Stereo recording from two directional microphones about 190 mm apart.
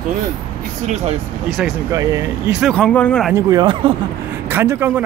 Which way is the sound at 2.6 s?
5° left (ahead or behind).